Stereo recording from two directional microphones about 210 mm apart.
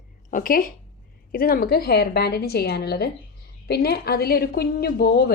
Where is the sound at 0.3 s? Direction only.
40° left (ahead or behind).